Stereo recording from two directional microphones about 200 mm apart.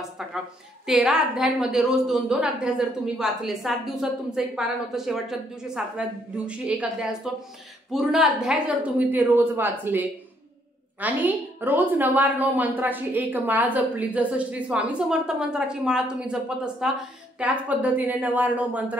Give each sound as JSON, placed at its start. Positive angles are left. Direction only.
{"t": 0.2, "sound": "a woman's voice", "side_deg": 0}